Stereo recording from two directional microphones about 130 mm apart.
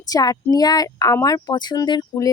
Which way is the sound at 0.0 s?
30° left (ahead or behind).